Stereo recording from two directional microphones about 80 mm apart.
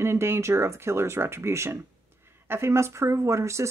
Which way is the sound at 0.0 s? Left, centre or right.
Right.